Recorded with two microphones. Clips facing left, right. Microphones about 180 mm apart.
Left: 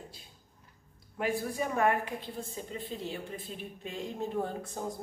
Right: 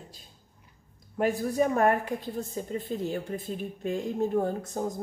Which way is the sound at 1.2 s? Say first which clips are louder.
Right 7 dB; 40° right (ahead or behind).